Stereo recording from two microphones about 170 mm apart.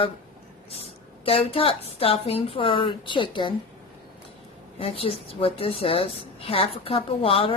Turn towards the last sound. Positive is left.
turn(degrees=35)  # may be behind; listen again after turning